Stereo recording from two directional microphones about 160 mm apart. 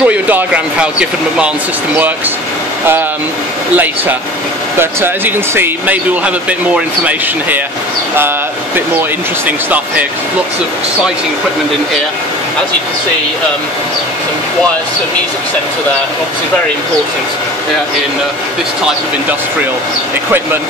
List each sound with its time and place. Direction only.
0.0 s speech: 10° right (ahead or behind)
3.7 s speech: 10° right (ahead or behind)